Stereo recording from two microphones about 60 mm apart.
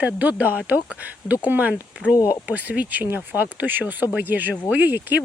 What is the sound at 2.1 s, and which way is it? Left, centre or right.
Speech, left.